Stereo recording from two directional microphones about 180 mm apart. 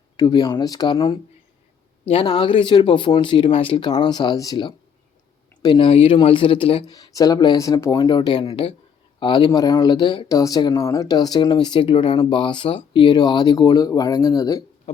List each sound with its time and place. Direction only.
0.2 s speech: 25° left (ahead or behind)
2.2 s speech: 25° left (ahead or behind)
14.9 s a sound: 40° left (ahead or behind)